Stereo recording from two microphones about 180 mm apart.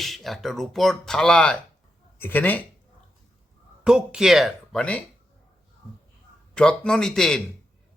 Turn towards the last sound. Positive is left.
turn(degrees=5)  # may be behind; listen again after turning